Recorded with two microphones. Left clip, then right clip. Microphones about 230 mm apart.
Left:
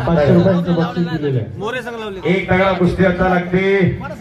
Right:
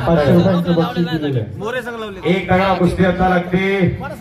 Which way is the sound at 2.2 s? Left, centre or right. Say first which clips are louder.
Even; right.